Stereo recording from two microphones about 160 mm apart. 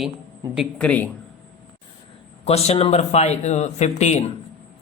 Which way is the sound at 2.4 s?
40° left (ahead or behind).